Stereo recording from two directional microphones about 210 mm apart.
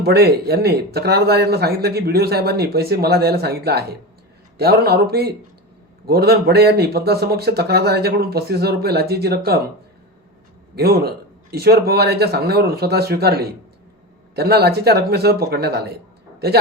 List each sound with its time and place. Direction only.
0.0 s speech: 50° right (ahead or behind)
10.8 s speech: 50° right (ahead or behind)